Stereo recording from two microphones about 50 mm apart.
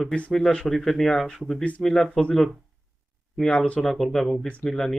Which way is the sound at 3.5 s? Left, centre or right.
Centre.